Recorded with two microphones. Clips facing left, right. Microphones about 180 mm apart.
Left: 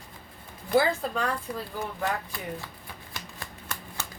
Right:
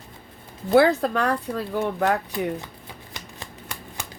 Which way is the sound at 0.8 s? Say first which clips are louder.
Right 7 dB; 70° right (ahead or behind).